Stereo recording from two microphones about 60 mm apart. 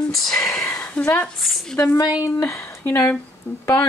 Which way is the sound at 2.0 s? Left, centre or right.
Left.